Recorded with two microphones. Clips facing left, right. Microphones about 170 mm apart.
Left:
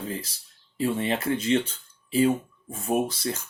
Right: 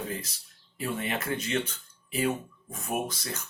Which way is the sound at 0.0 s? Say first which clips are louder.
Left 2 dB; 30° left (ahead or behind).